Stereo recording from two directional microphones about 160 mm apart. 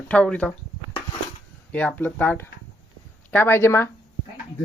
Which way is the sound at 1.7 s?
10° left (ahead or behind).